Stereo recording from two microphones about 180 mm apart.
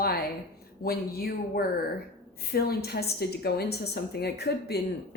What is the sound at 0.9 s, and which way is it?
Speech, 55° left (ahead or behind).